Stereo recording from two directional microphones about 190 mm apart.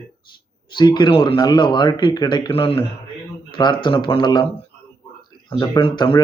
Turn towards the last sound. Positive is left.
turn(degrees=25)  # may be behind; listen again after turning